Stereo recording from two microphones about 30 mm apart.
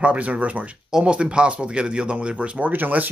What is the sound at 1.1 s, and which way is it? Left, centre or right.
Speech, right.